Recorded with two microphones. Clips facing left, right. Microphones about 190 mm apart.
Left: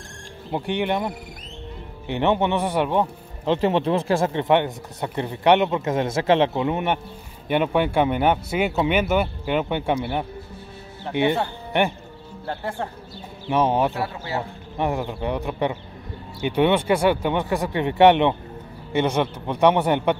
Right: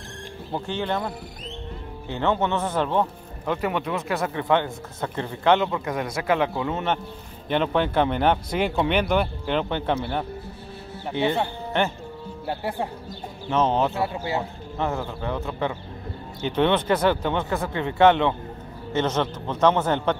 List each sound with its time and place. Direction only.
0.5 s speech: 15° left (ahead or behind)
3.4 s speech: 25° left (ahead or behind); by 10.2 s 10° left (ahead or behind)
11.7 s speech: 15° left (ahead or behind)
12.4 s speech: 10° right (ahead or behind)
13.5 s speech: 10° left (ahead or behind)
14.0 s speech: 15° right (ahead or behind)
14.8 s speech: 15° left (ahead or behind)